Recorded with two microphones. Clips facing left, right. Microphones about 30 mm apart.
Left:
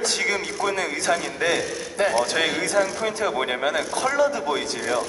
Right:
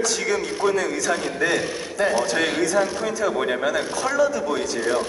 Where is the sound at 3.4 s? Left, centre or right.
Left.